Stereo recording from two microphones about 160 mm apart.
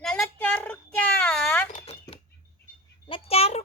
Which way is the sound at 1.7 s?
40° left (ahead or behind).